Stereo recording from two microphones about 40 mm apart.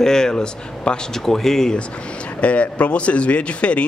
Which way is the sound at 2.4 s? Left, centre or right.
Left.